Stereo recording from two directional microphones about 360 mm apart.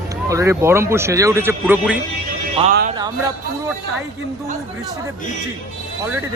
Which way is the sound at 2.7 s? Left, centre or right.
Right.